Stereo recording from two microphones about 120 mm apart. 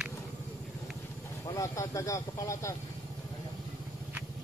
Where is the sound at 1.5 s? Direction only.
25° left (ahead or behind).